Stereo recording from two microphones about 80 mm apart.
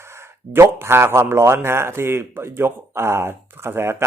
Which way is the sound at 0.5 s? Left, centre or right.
Right.